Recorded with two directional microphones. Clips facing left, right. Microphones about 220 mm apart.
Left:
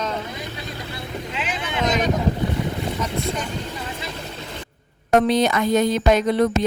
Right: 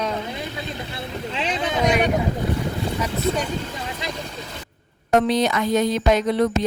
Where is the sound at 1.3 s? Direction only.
35° right (ahead or behind).